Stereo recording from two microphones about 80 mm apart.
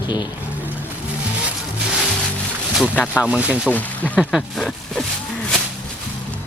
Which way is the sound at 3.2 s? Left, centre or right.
Centre.